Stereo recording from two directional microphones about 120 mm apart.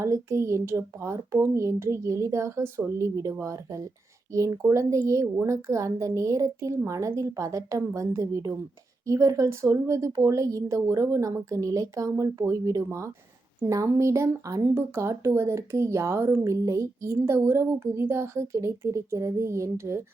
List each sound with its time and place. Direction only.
0.0 s speech: 25° right (ahead or behind)